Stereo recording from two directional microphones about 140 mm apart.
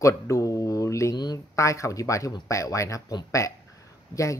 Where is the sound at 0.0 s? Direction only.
20° left (ahead or behind).